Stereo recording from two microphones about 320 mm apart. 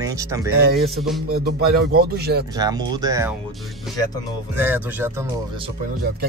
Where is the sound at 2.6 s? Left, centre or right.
Centre.